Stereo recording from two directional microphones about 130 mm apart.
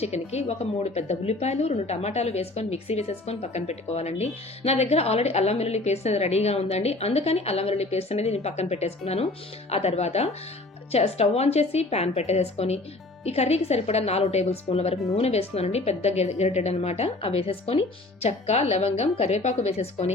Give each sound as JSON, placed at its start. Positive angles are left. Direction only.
{"t": 0.0, "sound": "a woman's voice", "side_deg": 55}